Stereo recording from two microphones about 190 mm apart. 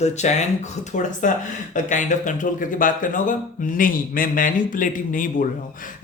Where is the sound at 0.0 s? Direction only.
35° left (ahead or behind).